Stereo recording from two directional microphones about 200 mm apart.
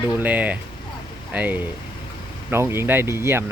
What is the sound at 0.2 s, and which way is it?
Speech, 10° right (ahead or behind).